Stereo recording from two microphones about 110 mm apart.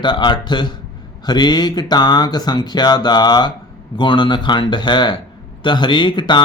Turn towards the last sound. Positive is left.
turn(degrees=45)  # may be behind; listen again after turning